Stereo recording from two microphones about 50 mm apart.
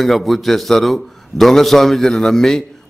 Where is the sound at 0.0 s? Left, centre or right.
Centre.